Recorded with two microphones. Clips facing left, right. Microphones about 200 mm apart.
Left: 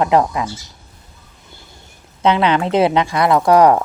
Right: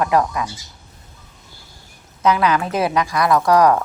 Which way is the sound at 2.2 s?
25° left (ahead or behind).